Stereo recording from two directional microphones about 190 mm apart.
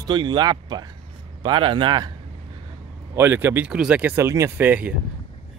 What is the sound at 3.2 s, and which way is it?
Speech, 10° right (ahead or behind).